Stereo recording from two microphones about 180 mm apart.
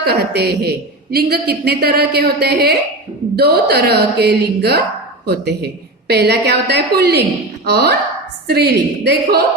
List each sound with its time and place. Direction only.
0.0 s a man's voice: 65° right (ahead or behind)